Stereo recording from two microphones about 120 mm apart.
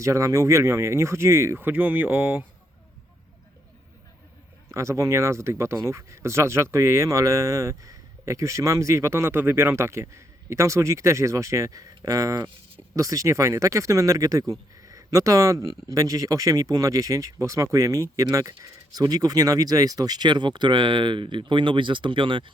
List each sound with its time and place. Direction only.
0.0 s speech: 25° right (ahead or behind); by 2.5 s 10° right (ahead or behind)
4.7 s speech: 25° right (ahead or behind); by 22.5 s 45° right (ahead or behind)